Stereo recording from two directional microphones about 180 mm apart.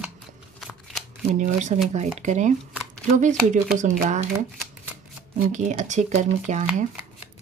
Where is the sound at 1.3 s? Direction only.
40° right (ahead or behind).